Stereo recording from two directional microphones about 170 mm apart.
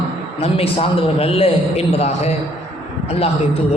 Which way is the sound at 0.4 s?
35° left (ahead or behind).